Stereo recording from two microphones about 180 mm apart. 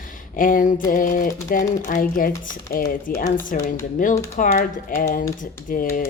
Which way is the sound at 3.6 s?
45° left (ahead or behind).